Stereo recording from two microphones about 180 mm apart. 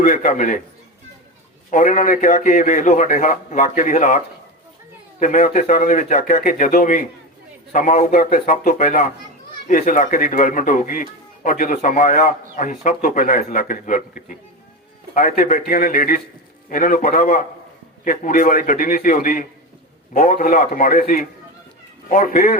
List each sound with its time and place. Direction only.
0.0 s speech: 45° left (ahead or behind)
1.7 s speech: 45° left (ahead or behind)
5.2 s speech: 45° left (ahead or behind)